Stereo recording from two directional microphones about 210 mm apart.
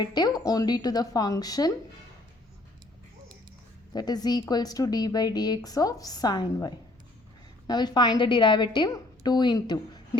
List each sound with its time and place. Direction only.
0.0 s a woman's voice: 20° left (ahead or behind)
3.9 s a woman's voice: 20° left (ahead or behind)